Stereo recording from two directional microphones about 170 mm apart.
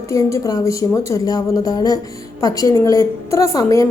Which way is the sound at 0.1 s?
15° left (ahead or behind).